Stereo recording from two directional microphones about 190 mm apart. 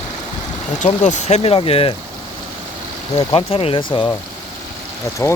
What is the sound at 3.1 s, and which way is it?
Speech, 30° left (ahead or behind).